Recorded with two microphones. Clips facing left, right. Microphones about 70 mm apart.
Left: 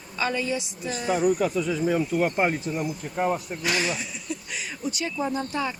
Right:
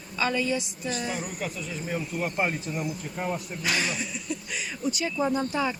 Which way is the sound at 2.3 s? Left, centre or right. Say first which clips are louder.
Left 4 dB; left.